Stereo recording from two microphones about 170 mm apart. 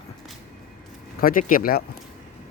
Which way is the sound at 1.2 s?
55° left (ahead or behind).